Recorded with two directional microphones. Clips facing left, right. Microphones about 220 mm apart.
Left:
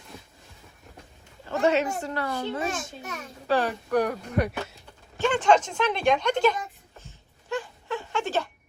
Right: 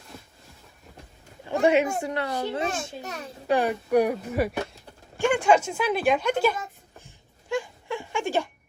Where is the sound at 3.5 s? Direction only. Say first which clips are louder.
Right 2 dB; 10° right (ahead or behind).